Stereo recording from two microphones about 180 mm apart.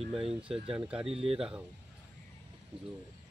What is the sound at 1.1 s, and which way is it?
Speech, 35° right (ahead or behind).